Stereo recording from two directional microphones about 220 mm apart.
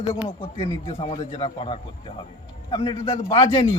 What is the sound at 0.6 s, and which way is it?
Speech, 25° left (ahead or behind).